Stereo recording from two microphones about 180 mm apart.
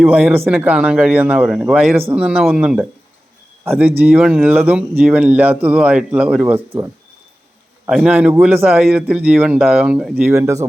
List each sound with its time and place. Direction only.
0.0 s speech: 5° right (ahead or behind)
7.9 s speech: 5° right (ahead or behind)
10.3 s speech: 15° right (ahead or behind)